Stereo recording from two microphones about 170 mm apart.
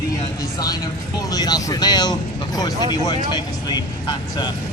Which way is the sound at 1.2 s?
25° left (ahead or behind).